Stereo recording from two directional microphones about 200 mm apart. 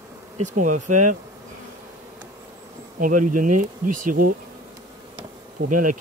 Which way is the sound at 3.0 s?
40° right (ahead or behind).